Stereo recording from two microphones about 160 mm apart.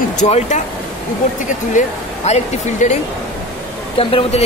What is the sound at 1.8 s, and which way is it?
Speech, 50° left (ahead or behind).